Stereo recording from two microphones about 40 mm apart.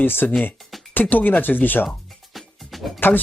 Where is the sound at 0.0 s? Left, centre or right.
Left.